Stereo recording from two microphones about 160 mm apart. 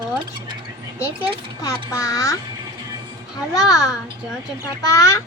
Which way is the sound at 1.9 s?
20° left (ahead or behind).